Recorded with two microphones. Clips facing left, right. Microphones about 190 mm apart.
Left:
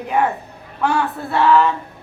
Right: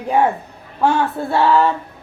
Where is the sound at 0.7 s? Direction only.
25° right (ahead or behind).